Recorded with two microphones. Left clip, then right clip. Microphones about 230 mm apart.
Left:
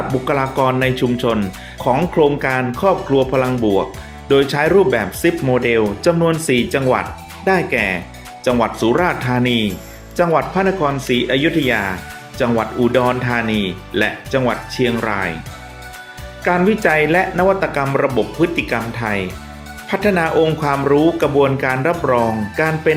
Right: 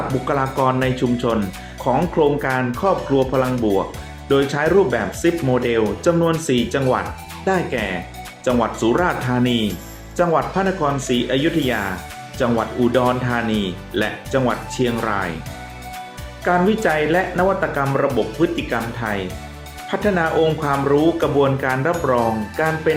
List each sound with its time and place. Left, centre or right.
0.3 s speech: left
16.4 s speech: left